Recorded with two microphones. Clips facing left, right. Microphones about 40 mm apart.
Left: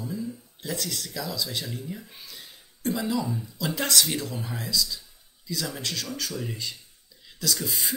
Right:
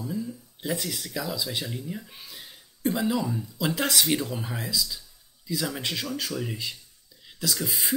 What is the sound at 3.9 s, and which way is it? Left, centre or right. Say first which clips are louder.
Speech: right 1 dB; centre.